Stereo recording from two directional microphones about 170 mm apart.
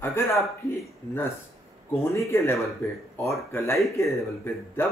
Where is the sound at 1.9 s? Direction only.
15° left (ahead or behind).